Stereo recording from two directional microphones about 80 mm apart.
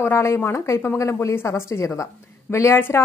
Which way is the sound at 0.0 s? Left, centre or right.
Left.